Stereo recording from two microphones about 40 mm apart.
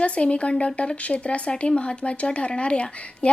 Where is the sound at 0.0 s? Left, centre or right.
Left.